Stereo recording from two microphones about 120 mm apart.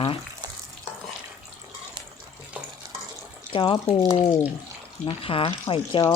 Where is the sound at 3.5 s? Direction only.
45° left (ahead or behind).